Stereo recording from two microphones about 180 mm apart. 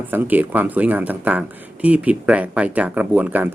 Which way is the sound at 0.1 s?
10° right (ahead or behind).